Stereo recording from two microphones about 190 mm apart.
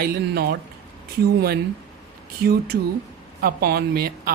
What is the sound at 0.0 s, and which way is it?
Speech, 50° right (ahead or behind).